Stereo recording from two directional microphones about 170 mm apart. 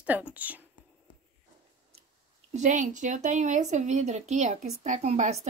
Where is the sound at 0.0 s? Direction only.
10° right (ahead or behind).